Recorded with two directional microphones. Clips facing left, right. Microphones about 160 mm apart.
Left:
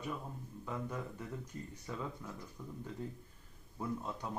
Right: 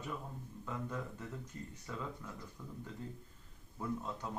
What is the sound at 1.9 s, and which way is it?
Speech, 20° left (ahead or behind).